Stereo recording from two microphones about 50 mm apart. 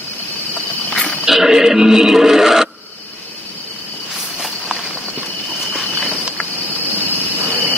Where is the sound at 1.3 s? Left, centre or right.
Centre.